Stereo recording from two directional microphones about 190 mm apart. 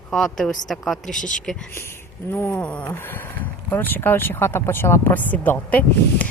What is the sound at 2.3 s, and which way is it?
Speech, 10° left (ahead or behind).